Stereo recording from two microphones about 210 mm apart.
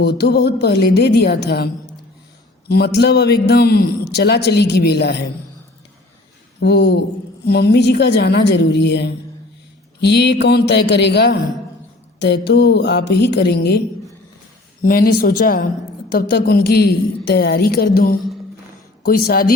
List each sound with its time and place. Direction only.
0.0 s a man's voice: 50° left (ahead or behind)
6.6 s a man's voice: 55° left (ahead or behind)
19.2 s a man's voice: 45° left (ahead or behind)